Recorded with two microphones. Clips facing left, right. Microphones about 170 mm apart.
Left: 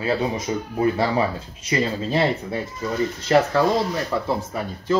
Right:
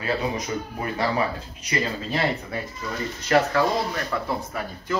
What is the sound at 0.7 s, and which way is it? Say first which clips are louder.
Speech: left 5 dB; 25° left (ahead or behind).